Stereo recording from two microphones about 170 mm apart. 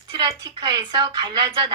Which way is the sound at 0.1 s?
25° right (ahead or behind).